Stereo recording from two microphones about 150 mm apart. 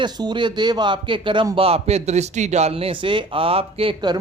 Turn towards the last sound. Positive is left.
turn(degrees=-35)  # may be behind; listen again after turning